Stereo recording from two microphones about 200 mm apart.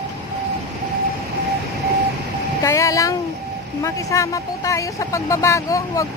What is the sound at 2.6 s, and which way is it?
Speech, 15° left (ahead or behind).